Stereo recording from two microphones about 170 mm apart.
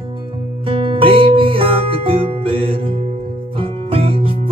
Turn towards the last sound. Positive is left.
turn(degrees=-30)  # may be behind; listen again after turning